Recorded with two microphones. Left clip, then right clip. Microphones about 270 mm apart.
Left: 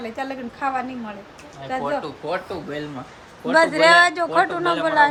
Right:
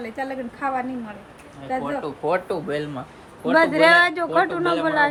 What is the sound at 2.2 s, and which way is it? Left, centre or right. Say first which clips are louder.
Speech: right 6 dB; centre.